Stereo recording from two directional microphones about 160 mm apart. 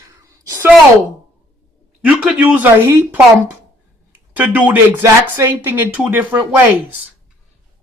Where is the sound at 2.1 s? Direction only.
10° right (ahead or behind).